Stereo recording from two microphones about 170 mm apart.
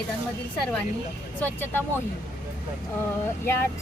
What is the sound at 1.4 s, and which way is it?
Speech, 15° left (ahead or behind).